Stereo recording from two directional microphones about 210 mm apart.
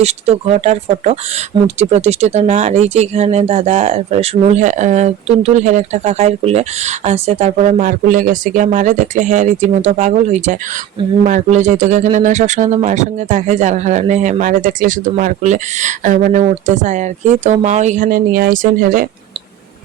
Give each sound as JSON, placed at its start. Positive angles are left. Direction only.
{"t": 0.0, "sound": "speech", "side_deg": -30}